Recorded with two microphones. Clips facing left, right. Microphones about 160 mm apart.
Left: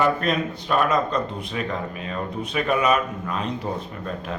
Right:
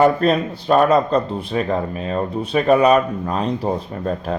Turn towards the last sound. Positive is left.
turn(degrees=-35)  # may be behind; listen again after turning